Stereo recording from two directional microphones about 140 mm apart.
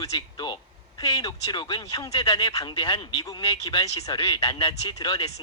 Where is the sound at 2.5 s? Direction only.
35° left (ahead or behind).